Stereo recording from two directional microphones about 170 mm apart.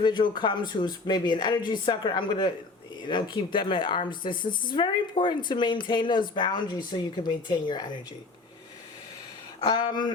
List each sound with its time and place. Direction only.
0.0 s speech: 25° left (ahead or behind)
9.6 s speech: 25° left (ahead or behind)